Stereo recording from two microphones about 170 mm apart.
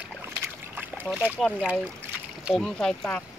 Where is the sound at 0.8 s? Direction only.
10° right (ahead or behind).